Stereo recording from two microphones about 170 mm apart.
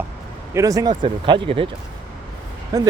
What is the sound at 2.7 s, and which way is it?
Speech, 20° right (ahead or behind).